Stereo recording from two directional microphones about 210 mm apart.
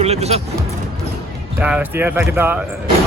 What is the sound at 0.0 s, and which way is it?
Music, 30° right (ahead or behind).